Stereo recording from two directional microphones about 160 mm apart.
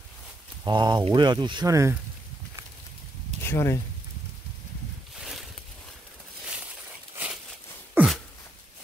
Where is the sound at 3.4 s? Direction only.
20° left (ahead or behind).